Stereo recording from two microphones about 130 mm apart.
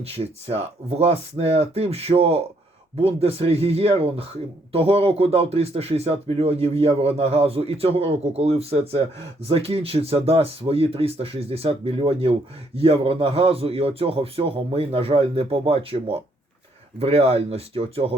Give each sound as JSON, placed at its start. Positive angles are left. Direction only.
{"t": 0.0, "sound": "speech", "side_deg": -50}